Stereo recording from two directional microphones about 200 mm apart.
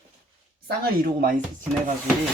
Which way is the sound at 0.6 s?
45° right (ahead or behind).